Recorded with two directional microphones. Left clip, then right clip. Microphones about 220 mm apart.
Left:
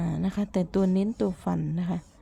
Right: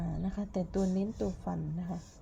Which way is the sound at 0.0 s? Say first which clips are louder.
Left 8 dB; 35° left (ahead or behind).